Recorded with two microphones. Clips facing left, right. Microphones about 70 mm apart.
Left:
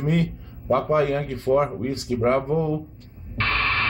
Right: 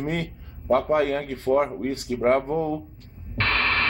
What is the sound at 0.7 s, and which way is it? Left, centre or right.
Speech, centre.